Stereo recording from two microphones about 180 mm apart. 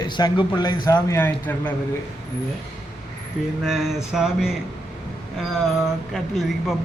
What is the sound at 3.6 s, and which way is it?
Speech, centre (ahead or behind).